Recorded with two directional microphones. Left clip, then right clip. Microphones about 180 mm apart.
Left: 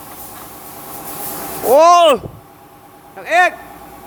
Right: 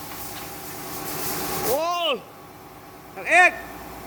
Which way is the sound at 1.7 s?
60° left (ahead or behind).